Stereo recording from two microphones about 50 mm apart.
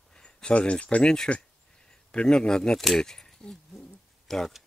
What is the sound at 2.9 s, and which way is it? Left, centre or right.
Speech, centre.